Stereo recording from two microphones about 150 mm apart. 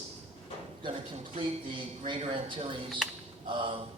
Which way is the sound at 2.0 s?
35° right (ahead or behind).